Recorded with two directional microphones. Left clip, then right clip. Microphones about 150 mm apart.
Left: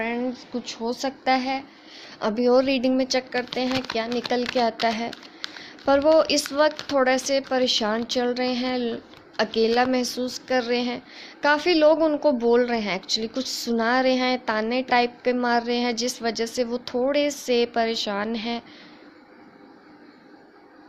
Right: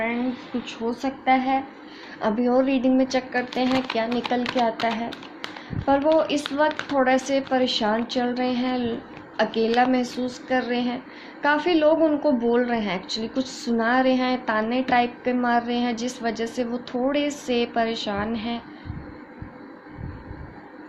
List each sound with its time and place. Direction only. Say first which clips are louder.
0.7 s a woman's voice: left 1 dB; 75° left (ahead or behind); by 3.8 s 40° left (ahead or behind)
4.6 s a woman's voice: even; 60° left (ahead or behind)